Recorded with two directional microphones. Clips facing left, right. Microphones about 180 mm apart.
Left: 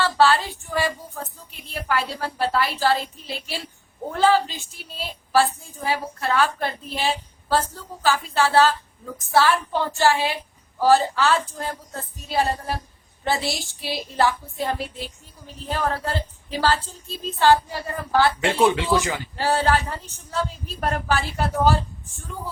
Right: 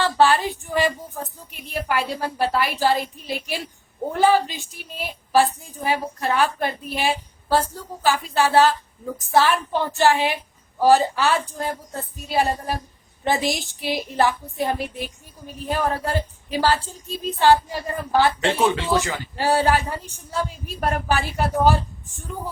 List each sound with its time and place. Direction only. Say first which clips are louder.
0.0 s a woman's voice: right 1 dB; 15° right (ahead or behind)
18.6 s speech: left 3 dB; 15° left (ahead or behind)
19.4 s a woman's voice: right 2 dB; 15° right (ahead or behind)